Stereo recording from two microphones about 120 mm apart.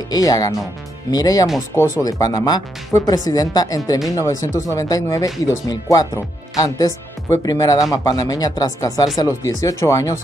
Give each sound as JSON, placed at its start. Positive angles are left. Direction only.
{"t": 0.1, "sound": "speech", "side_deg": 30}